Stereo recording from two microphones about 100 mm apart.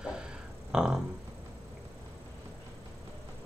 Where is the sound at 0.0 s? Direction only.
10° right (ahead or behind).